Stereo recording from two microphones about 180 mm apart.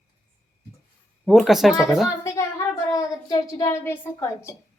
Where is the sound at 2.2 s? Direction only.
15° left (ahead or behind).